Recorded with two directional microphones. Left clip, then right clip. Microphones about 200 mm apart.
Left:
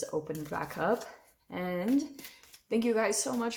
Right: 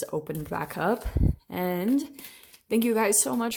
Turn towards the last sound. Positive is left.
turn(degrees=-50)  # may be behind; listen again after turning